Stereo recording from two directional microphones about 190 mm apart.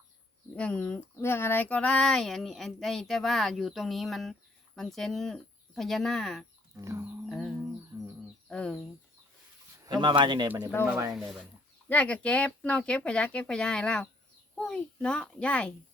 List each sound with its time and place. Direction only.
0.5 s speech: 5° left (ahead or behind)
6.8 s speech: 15° right (ahead or behind)
7.3 s a sound: centre (ahead or behind)
7.9 s a sound: 15° right (ahead or behind)
8.4 s speech: 5° left (ahead or behind)
10.0 s speech: 25° right (ahead or behind)
10.8 s speech: 10° right (ahead or behind)
11.9 s speech: 5° left (ahead or behind)